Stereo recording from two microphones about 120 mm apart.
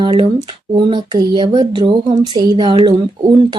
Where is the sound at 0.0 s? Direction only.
45° right (ahead or behind).